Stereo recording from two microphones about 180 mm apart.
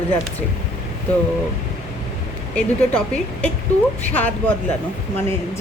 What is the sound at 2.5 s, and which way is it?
A woman's voice, 5° left (ahead or behind).